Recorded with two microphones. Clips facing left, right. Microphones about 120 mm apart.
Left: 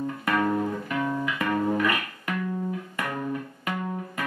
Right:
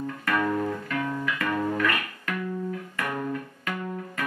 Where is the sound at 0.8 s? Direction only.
15° left (ahead or behind).